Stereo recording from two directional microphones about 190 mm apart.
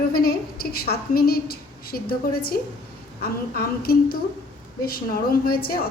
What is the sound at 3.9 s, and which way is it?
A woman's voice, 55° left (ahead or behind).